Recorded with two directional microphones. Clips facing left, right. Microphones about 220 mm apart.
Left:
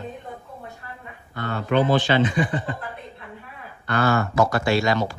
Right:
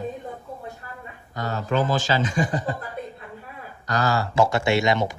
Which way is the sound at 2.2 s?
45° right (ahead or behind).